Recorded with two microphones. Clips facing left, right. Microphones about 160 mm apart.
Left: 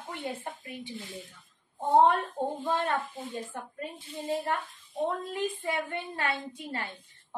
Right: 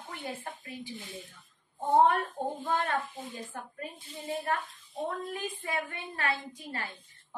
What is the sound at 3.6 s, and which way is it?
A woman's voice, 25° left (ahead or behind).